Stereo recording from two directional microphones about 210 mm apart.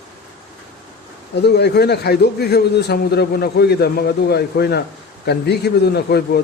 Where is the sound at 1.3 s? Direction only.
50° left (ahead or behind).